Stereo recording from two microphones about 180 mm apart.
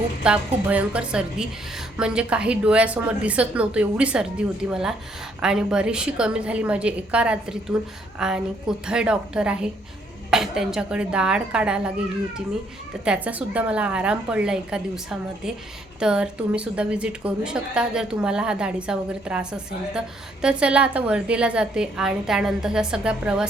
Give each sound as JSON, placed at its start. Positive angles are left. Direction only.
{"t": 0.2, "sound": "a woman's voice", "side_deg": -5}
{"t": 13.1, "sound": "a woman's voice", "side_deg": -10}